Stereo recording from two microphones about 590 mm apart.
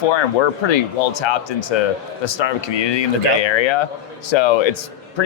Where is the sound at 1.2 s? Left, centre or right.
Left.